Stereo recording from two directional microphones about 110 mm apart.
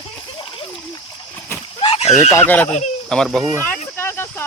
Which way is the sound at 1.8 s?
60° left (ahead or behind).